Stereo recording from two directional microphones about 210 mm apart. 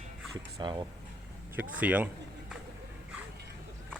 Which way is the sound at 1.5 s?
10° right (ahead or behind).